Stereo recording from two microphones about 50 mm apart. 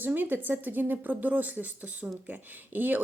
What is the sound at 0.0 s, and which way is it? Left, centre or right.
Speech, right.